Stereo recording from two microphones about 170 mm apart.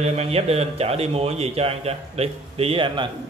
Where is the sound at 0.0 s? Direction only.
40° right (ahead or behind).